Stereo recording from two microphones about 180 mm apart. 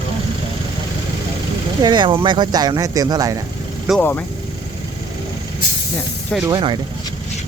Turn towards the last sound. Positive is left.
turn(degrees=-25)  # may be behind; listen again after turning